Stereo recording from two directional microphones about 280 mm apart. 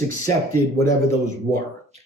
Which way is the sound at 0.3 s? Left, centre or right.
Centre.